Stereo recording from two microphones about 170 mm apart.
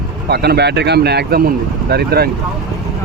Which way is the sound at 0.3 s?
70° right (ahead or behind).